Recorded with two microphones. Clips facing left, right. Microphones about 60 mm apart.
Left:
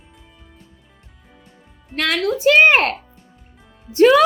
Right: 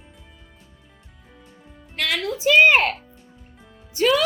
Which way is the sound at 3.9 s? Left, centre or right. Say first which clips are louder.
Left 8 dB; left.